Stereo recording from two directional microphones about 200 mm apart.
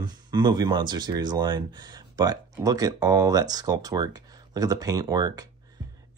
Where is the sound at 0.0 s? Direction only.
20° right (ahead or behind).